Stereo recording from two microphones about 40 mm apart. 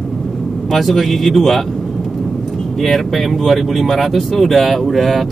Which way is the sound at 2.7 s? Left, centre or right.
Centre.